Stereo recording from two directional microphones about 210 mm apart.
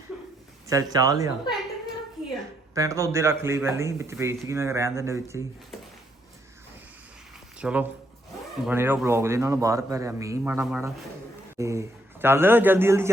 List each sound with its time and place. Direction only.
0.1 s a sound: 5° right (ahead or behind)
0.7 s speech: 15° right (ahead or behind)
2.7 s speech: 15° right (ahead or behind)
7.6 s speech: 5° right (ahead or behind)